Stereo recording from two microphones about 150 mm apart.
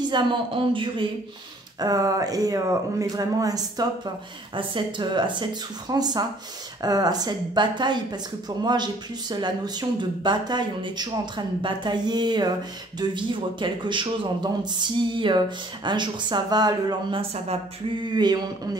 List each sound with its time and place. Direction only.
0.1 s a man's voice: 30° right (ahead or behind)
1.8 s a man's voice: 25° right (ahead or behind)